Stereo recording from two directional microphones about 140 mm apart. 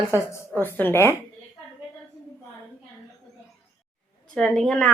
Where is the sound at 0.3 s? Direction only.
15° left (ahead or behind).